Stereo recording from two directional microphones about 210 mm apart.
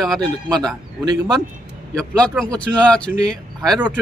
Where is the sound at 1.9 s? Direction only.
5° left (ahead or behind).